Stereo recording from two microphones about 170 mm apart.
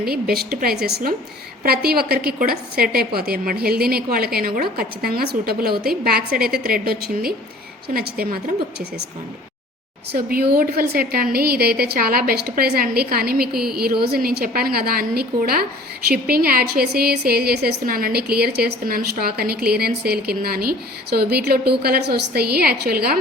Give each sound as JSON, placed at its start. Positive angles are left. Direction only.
{"t": 0.0, "sound": "a woman's voice", "side_deg": -65}
{"t": 10.1, "sound": "a woman's voice", "side_deg": -60}